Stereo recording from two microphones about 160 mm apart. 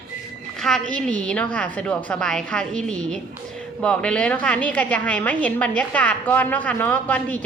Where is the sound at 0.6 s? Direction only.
Centre (ahead or behind).